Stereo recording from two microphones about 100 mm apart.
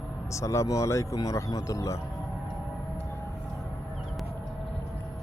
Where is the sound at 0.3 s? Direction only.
30° left (ahead or behind).